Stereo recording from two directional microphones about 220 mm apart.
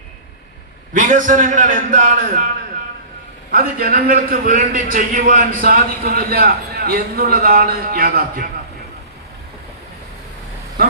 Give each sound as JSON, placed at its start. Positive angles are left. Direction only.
{"t": 0.9, "sound": "a man's voice", "side_deg": -35}
{"t": 3.5, "sound": "a man's voice", "side_deg": -40}